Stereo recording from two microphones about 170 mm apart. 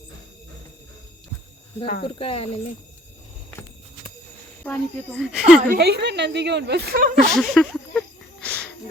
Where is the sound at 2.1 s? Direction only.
35° left (ahead or behind).